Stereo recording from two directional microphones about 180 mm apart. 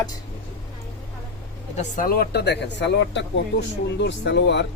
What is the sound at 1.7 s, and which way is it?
Speech, 45° left (ahead or behind).